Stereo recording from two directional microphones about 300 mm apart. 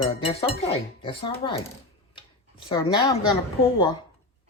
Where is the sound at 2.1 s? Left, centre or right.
Centre.